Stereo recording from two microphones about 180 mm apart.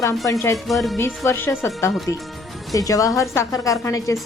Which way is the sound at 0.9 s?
15° left (ahead or behind).